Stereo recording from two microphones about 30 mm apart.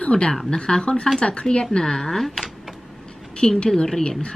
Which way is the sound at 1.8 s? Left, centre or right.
Centre.